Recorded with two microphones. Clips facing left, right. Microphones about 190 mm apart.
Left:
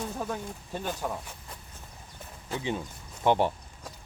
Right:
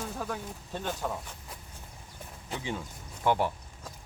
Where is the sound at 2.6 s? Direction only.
20° left (ahead or behind).